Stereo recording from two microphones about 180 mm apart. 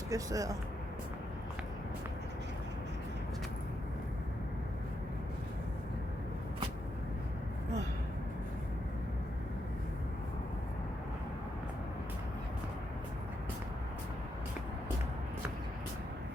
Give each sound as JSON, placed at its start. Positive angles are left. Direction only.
{"t": 0.1, "sound": "speech", "side_deg": -20}